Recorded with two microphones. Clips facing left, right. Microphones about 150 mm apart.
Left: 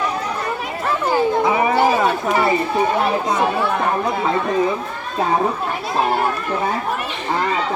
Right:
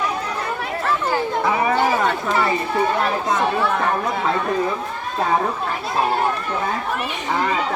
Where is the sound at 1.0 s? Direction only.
15° left (ahead or behind).